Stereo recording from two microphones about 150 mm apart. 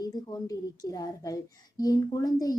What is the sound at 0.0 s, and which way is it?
A child's voice, 25° left (ahead or behind).